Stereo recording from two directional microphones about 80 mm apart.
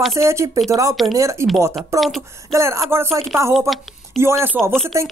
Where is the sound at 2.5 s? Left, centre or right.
Right.